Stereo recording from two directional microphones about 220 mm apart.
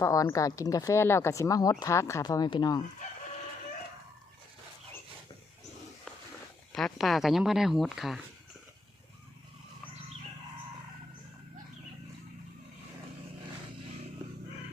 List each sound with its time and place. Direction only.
0.0 s speech: 15° left (ahead or behind)
6.7 s speech: centre (ahead or behind)